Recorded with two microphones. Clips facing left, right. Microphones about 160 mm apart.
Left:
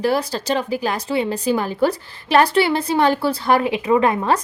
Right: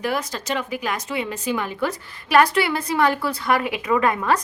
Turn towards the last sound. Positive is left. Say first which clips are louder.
# left 3 dB
turn(degrees=30)  # may be behind; listen again after turning